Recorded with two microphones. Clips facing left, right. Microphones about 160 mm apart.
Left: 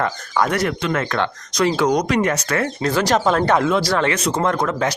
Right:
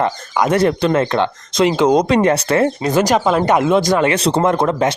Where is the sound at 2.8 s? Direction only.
15° right (ahead or behind).